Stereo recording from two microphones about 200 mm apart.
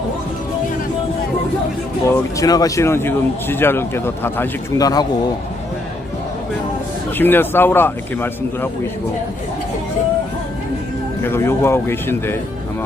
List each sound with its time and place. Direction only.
2.0 s speech: 15° left (ahead or behind)
7.2 s speech: 10° left (ahead or behind)
11.2 s speech: 10° left (ahead or behind)